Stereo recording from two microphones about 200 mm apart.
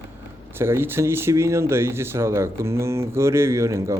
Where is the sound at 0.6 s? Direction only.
10° right (ahead or behind).